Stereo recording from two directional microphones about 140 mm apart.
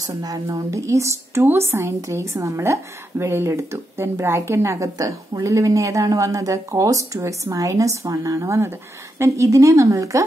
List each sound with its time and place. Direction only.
0.0 s a woman's voice: 25° right (ahead or behind)